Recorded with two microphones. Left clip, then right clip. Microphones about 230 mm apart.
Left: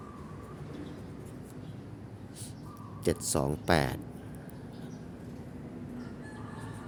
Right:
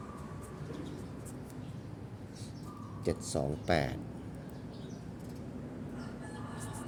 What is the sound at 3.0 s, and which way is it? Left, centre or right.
Speech, left.